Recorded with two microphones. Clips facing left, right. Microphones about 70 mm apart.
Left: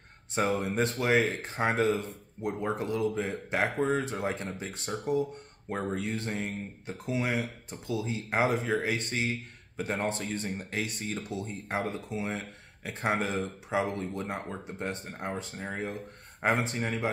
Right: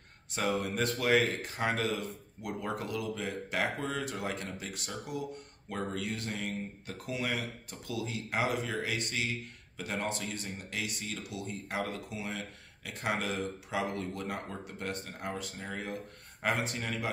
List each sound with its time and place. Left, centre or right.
0.3 s speech: left